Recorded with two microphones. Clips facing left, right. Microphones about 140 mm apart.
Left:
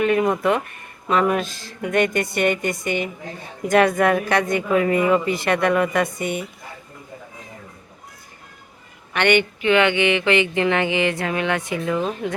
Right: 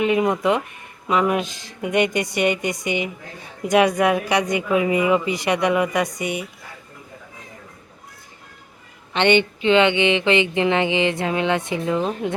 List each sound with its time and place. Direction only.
0.0 s speech: 15° right (ahead or behind)
9.1 s speech: 20° right (ahead or behind)